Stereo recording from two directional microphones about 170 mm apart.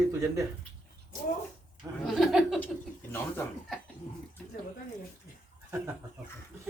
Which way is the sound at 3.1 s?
10° left (ahead or behind).